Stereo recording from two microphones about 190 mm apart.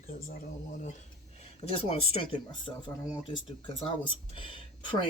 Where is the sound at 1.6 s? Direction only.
30° left (ahead or behind).